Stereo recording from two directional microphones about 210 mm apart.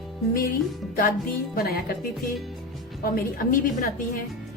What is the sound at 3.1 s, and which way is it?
Speech, 40° left (ahead or behind).